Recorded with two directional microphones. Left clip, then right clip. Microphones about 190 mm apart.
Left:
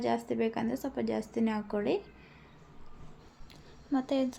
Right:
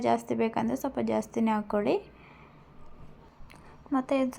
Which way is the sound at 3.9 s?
5° right (ahead or behind).